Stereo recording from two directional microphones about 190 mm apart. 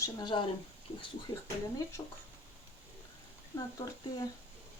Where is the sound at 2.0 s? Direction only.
15° left (ahead or behind).